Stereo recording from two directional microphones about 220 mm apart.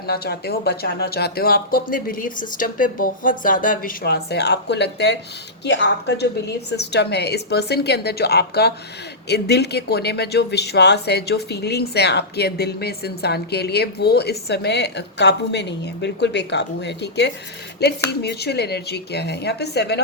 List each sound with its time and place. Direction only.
0.1 s speech: 45° left (ahead or behind)